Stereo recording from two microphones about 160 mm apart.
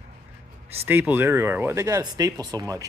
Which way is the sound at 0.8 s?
10° right (ahead or behind).